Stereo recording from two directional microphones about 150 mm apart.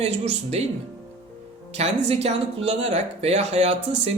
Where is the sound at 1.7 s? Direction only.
45° right (ahead or behind).